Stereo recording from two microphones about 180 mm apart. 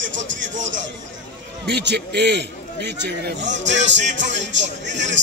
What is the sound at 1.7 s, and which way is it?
A man's voice, 70° right (ahead or behind).